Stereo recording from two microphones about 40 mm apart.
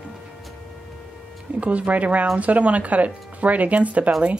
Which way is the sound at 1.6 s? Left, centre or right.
Right.